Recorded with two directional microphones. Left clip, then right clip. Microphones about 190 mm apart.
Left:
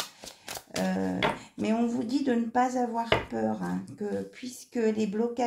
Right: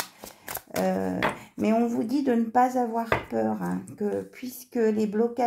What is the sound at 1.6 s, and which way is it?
Speech, 35° right (ahead or behind).